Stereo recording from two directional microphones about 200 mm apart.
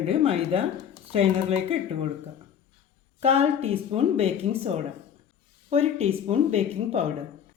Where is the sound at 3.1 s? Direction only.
30° right (ahead or behind).